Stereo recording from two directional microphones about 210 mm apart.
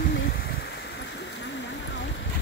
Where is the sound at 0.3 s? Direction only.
50° left (ahead or behind).